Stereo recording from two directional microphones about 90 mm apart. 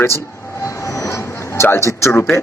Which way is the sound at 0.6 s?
35° left (ahead or behind).